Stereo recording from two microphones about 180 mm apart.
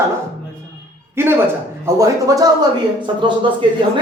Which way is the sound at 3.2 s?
25° right (ahead or behind).